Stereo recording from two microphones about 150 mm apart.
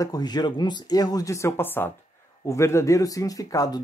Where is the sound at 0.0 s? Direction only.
25° left (ahead or behind).